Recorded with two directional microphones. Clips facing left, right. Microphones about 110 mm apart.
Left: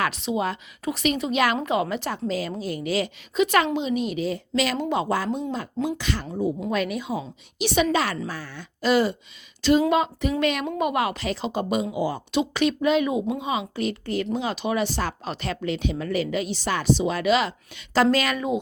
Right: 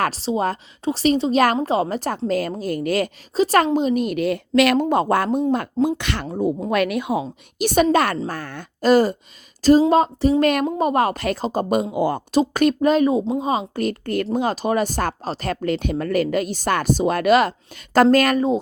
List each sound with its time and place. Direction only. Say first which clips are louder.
0.0 s a woman's voice: right 4 dB; 35° right (ahead or behind); by 3.1 s 50° right (ahead or behind)
3.3 s speech: right 4 dB; 35° right (ahead or behind); by 4.9 s 65° right (ahead or behind)
4.9 s speech: right 6 dB; 50° right (ahead or behind)
6.0 s speech: right 2 dB; 70° right (ahead or behind)
6.2 s a woman's voice: right 5 dB; 40° right (ahead or behind)
10.4 s speech: right 6 dB; 45° right (ahead or behind)
10.7 s speech: right 5 dB; 35° right (ahead or behind); by 12.2 s 55° right (ahead or behind)
12.3 s a woman's voice: right 5 dB; 45° right (ahead or behind)
18.3 s a woman's voice: right 6 dB; 35° right (ahead or behind)